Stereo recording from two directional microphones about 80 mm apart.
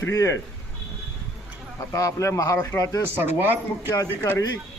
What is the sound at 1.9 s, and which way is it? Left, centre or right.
Speech, left.